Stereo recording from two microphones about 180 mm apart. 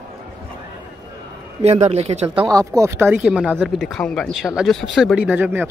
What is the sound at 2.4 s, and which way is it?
Speech, 20° right (ahead or behind).